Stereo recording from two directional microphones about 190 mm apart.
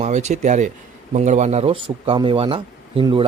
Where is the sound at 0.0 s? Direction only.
35° right (ahead or behind).